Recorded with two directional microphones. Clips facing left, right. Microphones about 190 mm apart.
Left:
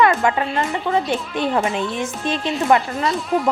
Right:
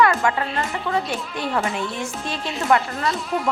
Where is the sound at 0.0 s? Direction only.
20° left (ahead or behind).